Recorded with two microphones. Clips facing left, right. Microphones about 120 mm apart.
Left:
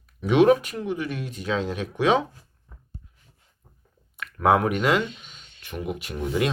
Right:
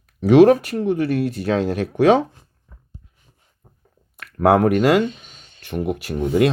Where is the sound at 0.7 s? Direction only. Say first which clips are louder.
Right 9 dB; 65° right (ahead or behind).